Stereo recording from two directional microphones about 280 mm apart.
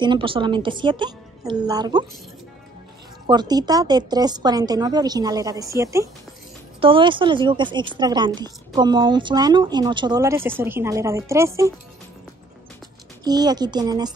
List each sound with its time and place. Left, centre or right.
0.0 s a woman's voice: centre
3.3 s a woman's voice: centre
13.2 s a woman's voice: centre